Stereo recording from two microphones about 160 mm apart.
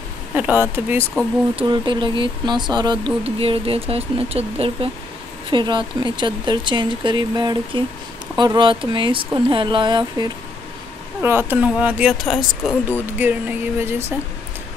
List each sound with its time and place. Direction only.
0.4 s speech: 10° right (ahead or behind)
1.6 s speech: 30° right (ahead or behind)
11.1 s speech: 15° right (ahead or behind)
12.8 s speech: 10° right (ahead or behind)